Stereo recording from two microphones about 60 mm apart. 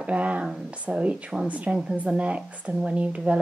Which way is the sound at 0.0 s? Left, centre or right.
Right.